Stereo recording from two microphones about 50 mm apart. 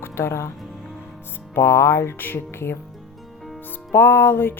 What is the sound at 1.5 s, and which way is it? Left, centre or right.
Speech, left.